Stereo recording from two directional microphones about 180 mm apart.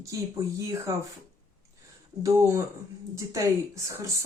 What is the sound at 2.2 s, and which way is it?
Speech, 15° right (ahead or behind).